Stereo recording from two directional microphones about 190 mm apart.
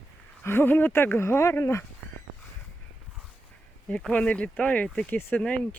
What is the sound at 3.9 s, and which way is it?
Speech, 5° left (ahead or behind).